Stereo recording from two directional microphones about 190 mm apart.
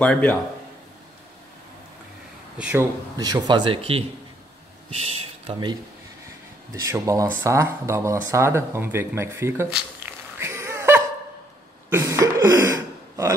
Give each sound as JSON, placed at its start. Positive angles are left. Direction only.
{"t": 0.0, "sound": "a man's voice", "side_deg": 5}
{"t": 2.6, "sound": "speech", "side_deg": -10}
{"t": 5.5, "sound": "speech", "side_deg": -25}
{"t": 10.4, "sound": "a sound", "side_deg": -15}
{"t": 11.9, "sound": "speech", "side_deg": -15}